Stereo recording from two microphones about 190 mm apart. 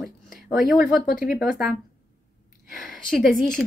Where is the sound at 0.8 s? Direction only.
45° left (ahead or behind).